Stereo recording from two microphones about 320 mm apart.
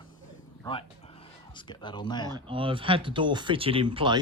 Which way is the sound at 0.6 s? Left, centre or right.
Centre.